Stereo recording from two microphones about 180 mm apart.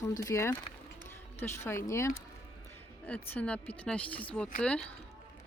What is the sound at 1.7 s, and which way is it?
Speech, 15° left (ahead or behind).